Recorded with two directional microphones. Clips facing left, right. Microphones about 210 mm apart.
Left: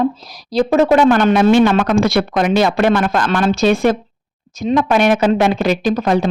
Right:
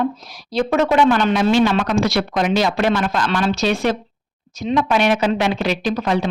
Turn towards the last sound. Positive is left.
turn(degrees=45)  # may be behind; listen again after turning